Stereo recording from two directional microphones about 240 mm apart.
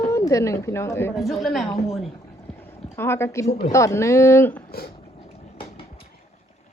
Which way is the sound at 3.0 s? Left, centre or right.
Centre.